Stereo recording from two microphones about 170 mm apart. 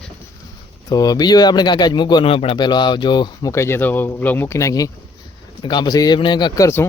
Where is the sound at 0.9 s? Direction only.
25° left (ahead or behind).